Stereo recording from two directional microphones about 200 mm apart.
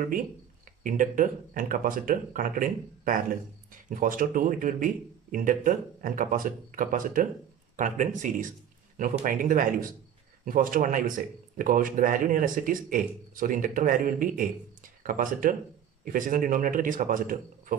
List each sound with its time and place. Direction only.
0.8 s a man's voice: 40° right (ahead or behind)